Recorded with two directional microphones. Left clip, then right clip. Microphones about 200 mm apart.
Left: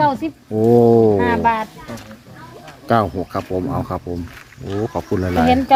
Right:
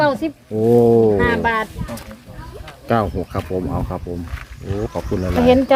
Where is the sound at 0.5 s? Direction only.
15° left (ahead or behind).